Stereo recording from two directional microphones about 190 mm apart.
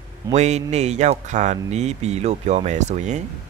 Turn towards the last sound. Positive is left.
turn(degrees=-40)  # may be behind; listen again after turning